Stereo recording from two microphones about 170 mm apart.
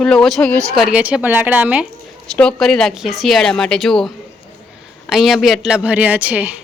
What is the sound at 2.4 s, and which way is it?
Speech, 5° left (ahead or behind).